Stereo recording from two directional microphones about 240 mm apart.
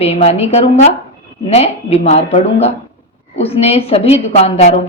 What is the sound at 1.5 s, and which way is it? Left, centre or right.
A woman's voice, left.